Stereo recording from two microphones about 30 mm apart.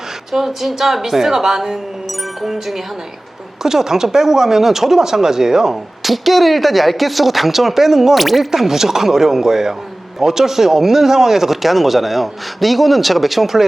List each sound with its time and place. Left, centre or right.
0.3 s a woman's voice: centre
3.6 s speech: centre
6.0 s a woman's voice: centre
8.4 s speech: centre